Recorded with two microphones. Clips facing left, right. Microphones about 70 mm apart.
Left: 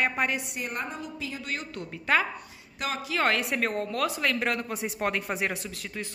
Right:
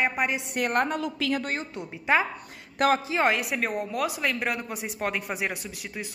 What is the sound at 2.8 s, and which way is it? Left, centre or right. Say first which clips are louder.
Speech: right 10 dB; right.